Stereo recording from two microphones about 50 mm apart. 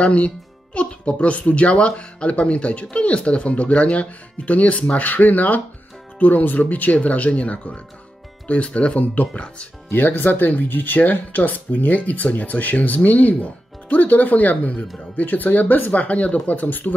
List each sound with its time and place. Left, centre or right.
0.0 s speech: left
9.8 s speech: left